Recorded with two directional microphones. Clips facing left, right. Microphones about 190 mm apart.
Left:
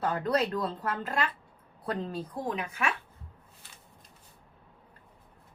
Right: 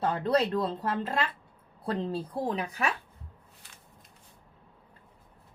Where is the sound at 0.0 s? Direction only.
30° right (ahead or behind).